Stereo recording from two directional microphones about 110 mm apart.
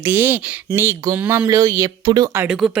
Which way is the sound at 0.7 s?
25° right (ahead or behind).